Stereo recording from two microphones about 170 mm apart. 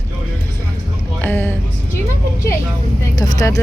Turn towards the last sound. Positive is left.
turn(degrees=20)  # may be behind; listen again after turning